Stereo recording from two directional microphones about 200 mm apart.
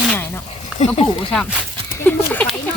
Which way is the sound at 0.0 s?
10° left (ahead or behind).